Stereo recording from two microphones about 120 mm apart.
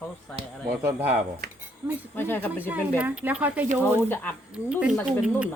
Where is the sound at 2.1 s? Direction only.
20° left (ahead or behind).